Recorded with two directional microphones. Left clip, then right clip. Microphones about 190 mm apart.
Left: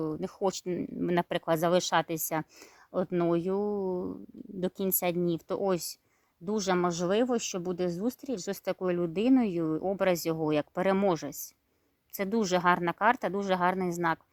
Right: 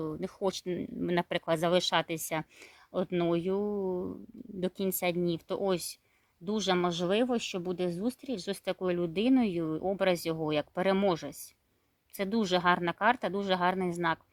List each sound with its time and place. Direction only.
0.0 s speech: 40° left (ahead or behind)